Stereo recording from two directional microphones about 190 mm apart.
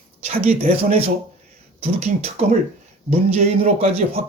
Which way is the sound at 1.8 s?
35° right (ahead or behind).